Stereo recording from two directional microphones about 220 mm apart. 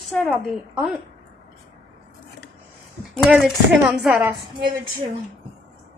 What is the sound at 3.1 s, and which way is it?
Speech, 5° right (ahead or behind).